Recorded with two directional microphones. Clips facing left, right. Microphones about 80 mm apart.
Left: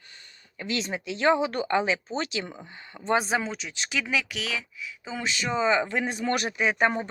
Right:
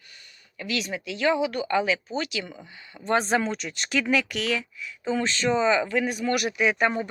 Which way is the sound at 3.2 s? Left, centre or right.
Centre.